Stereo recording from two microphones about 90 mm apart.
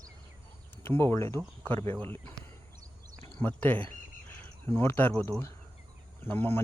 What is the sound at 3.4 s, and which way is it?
Speech, 20° left (ahead or behind).